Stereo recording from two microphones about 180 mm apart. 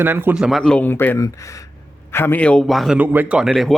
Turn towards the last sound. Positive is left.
turn(degrees=0)  # may be behind; listen again after turning